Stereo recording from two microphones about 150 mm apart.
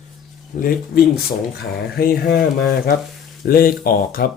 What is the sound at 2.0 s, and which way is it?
Speech, 85° left.